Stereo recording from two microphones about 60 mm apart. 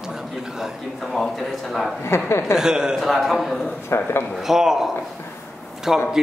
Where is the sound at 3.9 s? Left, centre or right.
Left.